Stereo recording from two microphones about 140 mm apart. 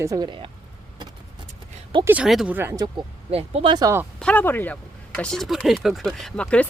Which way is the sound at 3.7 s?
25° right (ahead or behind).